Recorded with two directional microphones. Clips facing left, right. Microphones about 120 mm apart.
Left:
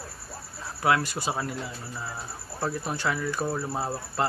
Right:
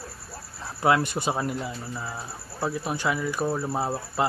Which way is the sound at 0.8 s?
25° right (ahead or behind).